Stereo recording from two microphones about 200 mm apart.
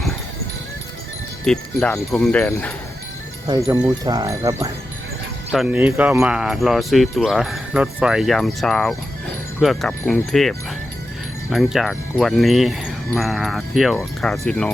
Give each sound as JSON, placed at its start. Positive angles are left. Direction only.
{"t": 1.5, "sound": "speech", "side_deg": 5}
{"t": 3.4, "sound": "speech", "side_deg": -20}
{"t": 11.5, "sound": "speech", "side_deg": 0}